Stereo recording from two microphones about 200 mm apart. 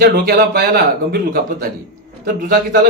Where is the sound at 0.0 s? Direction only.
50° right (ahead or behind).